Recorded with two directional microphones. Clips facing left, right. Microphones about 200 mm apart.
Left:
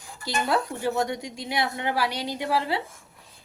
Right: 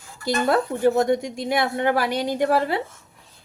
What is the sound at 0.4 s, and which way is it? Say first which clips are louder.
A woman's voice: right 7 dB; 50° right (ahead or behind).